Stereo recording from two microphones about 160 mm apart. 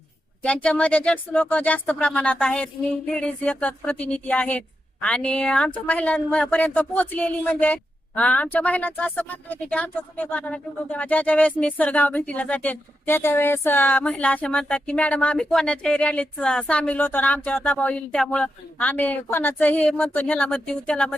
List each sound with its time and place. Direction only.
0.4 s speech: 5° left (ahead or behind)